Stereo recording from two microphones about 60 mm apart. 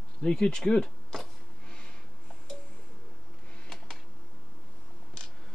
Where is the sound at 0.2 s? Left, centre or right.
Centre.